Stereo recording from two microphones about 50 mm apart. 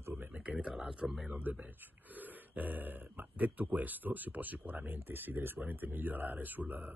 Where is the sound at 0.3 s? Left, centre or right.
Right.